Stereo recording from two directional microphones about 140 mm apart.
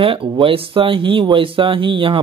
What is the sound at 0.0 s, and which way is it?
Speech, 40° right (ahead or behind).